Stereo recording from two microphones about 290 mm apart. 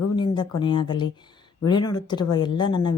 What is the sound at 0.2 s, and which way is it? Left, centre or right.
Speech, centre.